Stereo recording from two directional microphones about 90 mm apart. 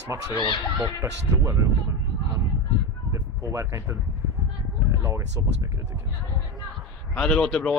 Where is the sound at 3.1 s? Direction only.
35° right (ahead or behind).